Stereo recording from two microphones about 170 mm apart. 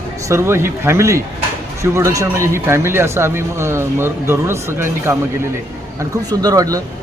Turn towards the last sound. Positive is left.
turn(degrees=-20)  # may be behind; listen again after turning